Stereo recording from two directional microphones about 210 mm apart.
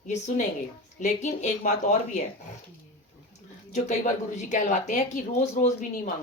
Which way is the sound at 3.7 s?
35° left (ahead or behind).